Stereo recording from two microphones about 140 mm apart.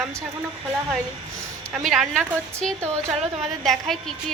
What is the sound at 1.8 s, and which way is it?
Speech, centre (ahead or behind).